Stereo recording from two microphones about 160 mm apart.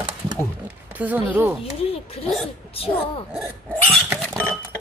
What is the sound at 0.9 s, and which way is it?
Speech, 10° right (ahead or behind).